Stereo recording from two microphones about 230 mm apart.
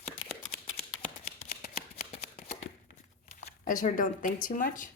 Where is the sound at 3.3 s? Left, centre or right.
Left.